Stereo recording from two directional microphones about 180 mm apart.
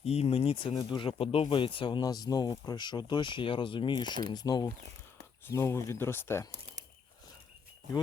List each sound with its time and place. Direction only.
0.0 s speech: 35° left (ahead or behind); by 6.5 s 15° left (ahead or behind)